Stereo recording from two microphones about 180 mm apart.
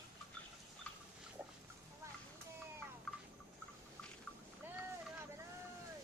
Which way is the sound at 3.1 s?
Centre (ahead or behind).